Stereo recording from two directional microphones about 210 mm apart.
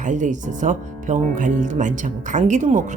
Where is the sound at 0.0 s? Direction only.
35° right (ahead or behind).